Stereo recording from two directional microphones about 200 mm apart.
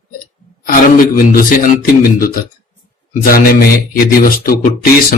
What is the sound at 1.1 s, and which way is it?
Speech, 45° left (ahead or behind).